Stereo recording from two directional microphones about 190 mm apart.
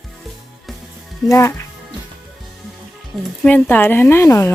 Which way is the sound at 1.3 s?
15° left (ahead or behind).